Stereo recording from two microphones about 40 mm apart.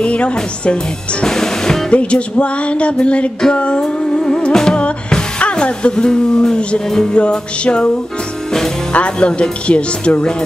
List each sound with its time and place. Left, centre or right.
0.0 s speech: left
1.2 s music: centre
1.9 s music: left
3.5 s speech: left
3.8 s music: centre
5.1 s speech: left
6.9 s music: centre
7.2 s speech: left
8.9 s speech: left